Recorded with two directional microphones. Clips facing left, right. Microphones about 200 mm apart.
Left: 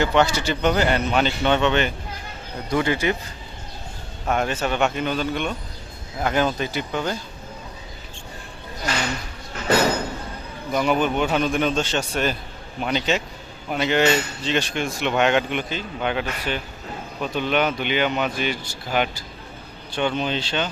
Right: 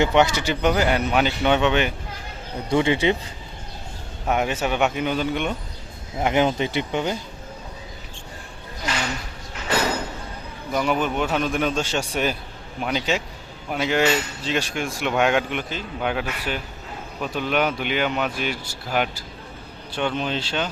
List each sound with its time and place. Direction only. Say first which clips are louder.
0.0 s speech: right 1 dB; 20° right (ahead or behind)
2.6 s speech: right 2 dB; 25° right (ahead or behind)
4.3 s speech: even; 15° right (ahead or behind)
10.7 s speech: left 2 dB; centre (ahead or behind)